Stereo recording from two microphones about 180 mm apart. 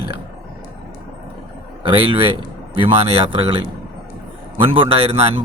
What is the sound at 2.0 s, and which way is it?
Speech, 30° right (ahead or behind).